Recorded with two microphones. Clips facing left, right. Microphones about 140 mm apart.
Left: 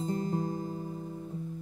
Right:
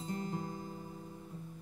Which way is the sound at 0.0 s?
35° left (ahead or behind).